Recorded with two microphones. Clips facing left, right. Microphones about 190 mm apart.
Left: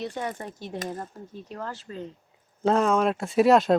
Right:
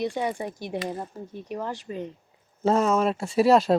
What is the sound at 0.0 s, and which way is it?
Speech, 10° right (ahead or behind).